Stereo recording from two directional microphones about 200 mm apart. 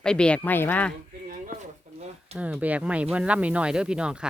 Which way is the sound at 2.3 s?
5° right (ahead or behind).